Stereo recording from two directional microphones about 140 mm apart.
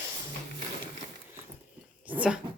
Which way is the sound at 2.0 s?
10° right (ahead or behind).